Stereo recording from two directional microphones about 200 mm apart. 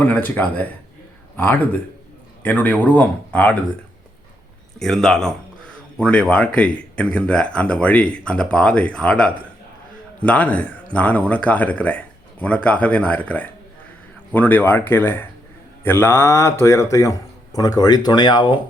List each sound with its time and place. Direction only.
0.0 s speech: 10° left (ahead or behind)
4.8 s speech: centre (ahead or behind); by 18.6 s 20° left (ahead or behind)